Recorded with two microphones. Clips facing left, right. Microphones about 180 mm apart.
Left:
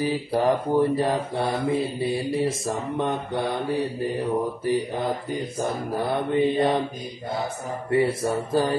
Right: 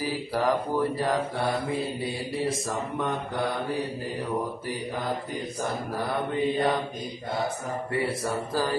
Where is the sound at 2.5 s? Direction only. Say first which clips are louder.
Left 3 dB; 25° left (ahead or behind).